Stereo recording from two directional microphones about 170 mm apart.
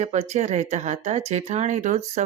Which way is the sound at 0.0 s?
45° right (ahead or behind).